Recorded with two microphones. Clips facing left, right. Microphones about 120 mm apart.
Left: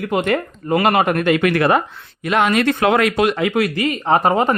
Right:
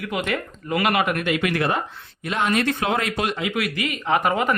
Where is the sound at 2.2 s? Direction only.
75° left (ahead or behind).